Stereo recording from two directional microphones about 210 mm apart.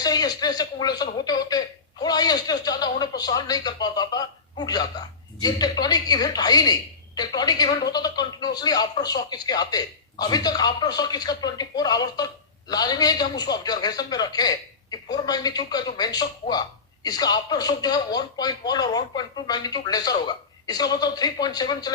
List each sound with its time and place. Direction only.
0.0 s a man's voice: 20° left (ahead or behind)